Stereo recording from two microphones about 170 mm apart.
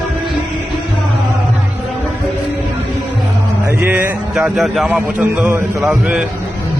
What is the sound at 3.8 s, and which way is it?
A man's voice, 10° right (ahead or behind).